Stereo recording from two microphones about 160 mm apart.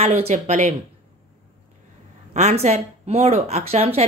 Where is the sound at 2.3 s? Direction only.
45° right (ahead or behind).